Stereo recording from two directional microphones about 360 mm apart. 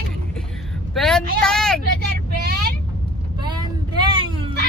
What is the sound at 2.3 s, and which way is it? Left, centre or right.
Vehicle, right.